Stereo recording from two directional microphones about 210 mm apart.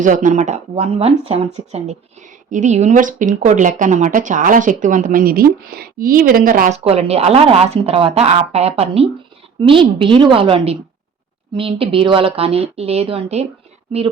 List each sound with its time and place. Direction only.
0.0 s speech: 40° right (ahead or behind)
2.5 s speech: 35° right (ahead or behind)